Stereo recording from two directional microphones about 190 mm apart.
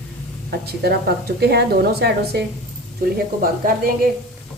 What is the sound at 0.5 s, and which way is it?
Speech, 55° right (ahead or behind).